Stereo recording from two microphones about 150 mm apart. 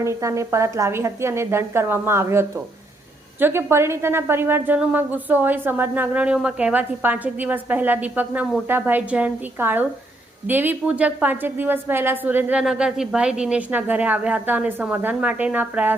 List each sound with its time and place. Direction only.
0.0 s a woman's voice: 20° right (ahead or behind)